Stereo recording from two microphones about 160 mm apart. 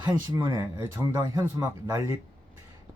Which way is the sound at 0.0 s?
15° right (ahead or behind).